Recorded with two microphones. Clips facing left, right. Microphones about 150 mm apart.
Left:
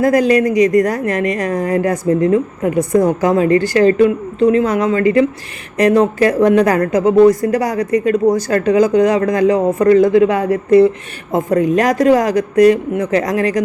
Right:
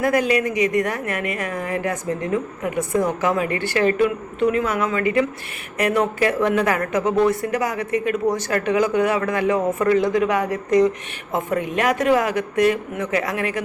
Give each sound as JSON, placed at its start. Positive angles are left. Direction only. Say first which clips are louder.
{"t": 0.0, "sound": "a woman's voice", "louder": "left 7 dB", "side_deg": 40}